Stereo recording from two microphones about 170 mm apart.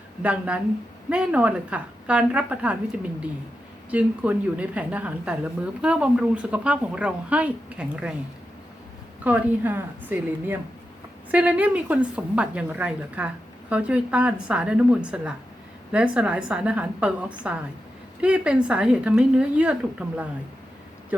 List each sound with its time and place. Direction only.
0.2 s a woman's voice: 10° right (ahead or behind)
3.9 s a woman's voice: 10° right (ahead or behind)
9.2 s a woman's voice: 10° right (ahead or behind)